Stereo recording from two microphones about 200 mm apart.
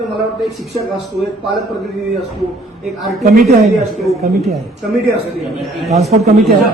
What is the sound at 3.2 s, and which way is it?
Speech, 40° right (ahead or behind).